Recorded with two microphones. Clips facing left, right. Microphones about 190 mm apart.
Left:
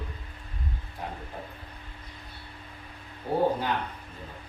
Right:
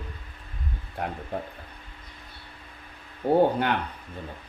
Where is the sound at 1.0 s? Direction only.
65° right (ahead or behind).